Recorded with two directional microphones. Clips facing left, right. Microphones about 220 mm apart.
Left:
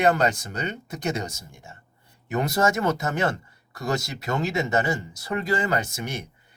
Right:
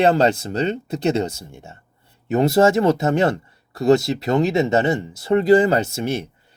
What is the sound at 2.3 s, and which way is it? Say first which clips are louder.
Speech: right 8 dB; 25° right (ahead or behind).